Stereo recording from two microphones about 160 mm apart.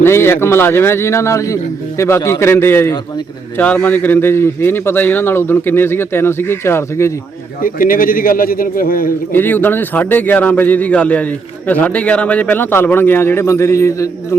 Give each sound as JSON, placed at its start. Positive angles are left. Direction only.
{"t": 0.0, "sound": "a man's voice", "side_deg": 15}
{"t": 7.6, "sound": "a man's voice", "side_deg": 60}
{"t": 9.3, "sound": "a man's voice", "side_deg": 10}